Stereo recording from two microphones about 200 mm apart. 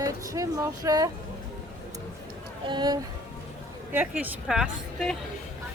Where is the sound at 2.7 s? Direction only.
20° right (ahead or behind).